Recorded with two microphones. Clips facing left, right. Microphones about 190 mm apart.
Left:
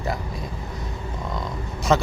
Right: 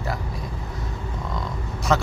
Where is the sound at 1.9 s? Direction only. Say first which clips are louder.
Left 2 dB; 25° left (ahead or behind).